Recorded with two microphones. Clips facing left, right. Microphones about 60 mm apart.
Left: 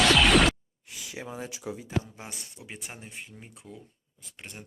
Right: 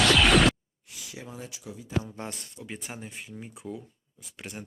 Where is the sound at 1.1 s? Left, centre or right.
Left.